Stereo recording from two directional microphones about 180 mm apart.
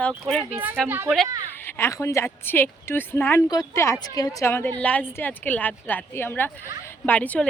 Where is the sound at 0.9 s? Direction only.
10° right (ahead or behind).